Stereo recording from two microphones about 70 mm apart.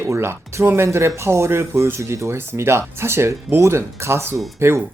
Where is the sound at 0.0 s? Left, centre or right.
Right.